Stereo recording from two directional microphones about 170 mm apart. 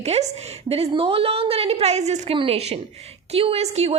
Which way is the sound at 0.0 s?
40° right (ahead or behind).